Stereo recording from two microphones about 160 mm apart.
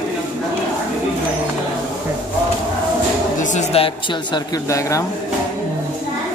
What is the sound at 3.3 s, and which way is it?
Speech, 50° left (ahead or behind).